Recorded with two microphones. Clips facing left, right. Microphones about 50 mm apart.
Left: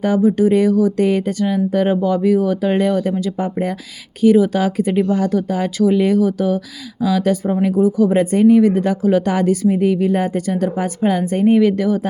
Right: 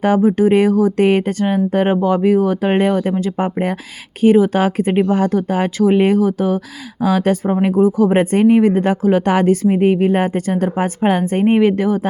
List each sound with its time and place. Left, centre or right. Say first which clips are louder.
0.0 s speech: right 1 dB; right
7.0 s speech: right 1 dB; right